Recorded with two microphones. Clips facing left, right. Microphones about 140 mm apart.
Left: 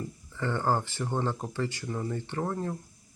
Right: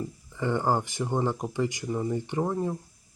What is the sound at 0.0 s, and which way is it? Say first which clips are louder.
Speech: right 3 dB; 15° right (ahead or behind).